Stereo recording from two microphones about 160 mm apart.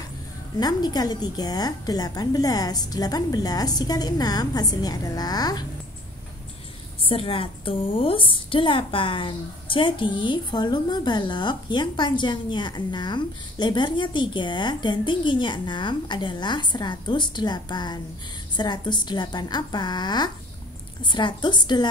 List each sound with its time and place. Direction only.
0.6 s a woman's voice: 25° left (ahead or behind)
7.0 s a woman's voice: 35° left (ahead or behind)